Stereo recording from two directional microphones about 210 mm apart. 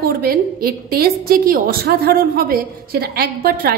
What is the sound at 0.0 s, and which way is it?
A woman's voice, 45° right (ahead or behind).